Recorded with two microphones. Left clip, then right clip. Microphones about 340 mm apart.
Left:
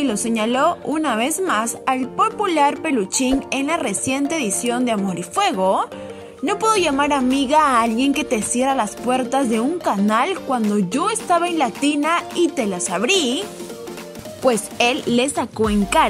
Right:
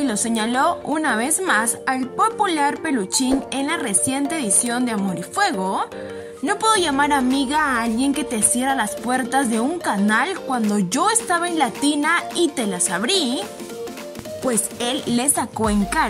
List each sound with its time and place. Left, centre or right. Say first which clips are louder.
0.0 s a woman's voice: left 2 dB; centre
14.4 s a woman's voice: left 7 dB; centre